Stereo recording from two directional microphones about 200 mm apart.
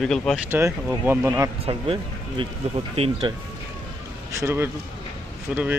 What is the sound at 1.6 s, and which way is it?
Speech, 25° right (ahead or behind).